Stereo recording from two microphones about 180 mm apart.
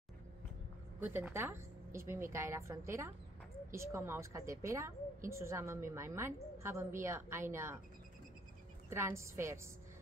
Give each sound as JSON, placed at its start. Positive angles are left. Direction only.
{"t": 0.9, "sound": "a woman's voice", "side_deg": -10}
{"t": 8.9, "sound": "a woman's voice", "side_deg": -15}